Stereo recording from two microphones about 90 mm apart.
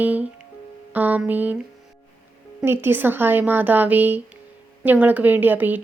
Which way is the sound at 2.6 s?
25° right (ahead or behind).